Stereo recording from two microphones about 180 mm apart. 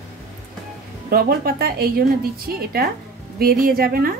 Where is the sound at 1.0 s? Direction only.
55° right (ahead or behind).